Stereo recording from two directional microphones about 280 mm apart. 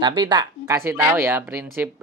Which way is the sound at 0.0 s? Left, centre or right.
Centre.